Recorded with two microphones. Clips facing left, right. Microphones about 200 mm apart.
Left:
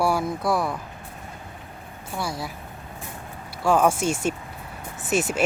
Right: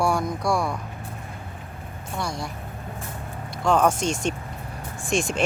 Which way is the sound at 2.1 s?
5° left (ahead or behind).